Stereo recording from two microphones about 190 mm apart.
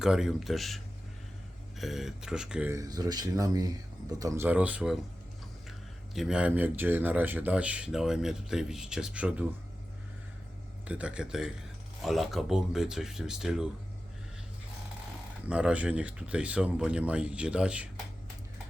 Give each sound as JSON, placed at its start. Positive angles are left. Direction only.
{"t": 0.0, "sound": "speech", "side_deg": -5}
{"t": 1.8, "sound": "speech", "side_deg": 0}
{"t": 2.7, "sound": "speech", "side_deg": -20}
{"t": 6.1, "sound": "speech", "side_deg": -5}
{"t": 10.8, "sound": "speech", "side_deg": -5}
{"t": 15.4, "sound": "speech", "side_deg": -5}